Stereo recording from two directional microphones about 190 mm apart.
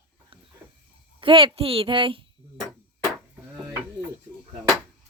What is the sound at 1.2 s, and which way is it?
Speech, 25° right (ahead or behind).